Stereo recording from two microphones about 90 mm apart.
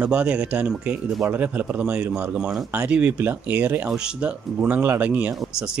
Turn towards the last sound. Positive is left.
turn(degrees=-5)  # may be behind; listen again after turning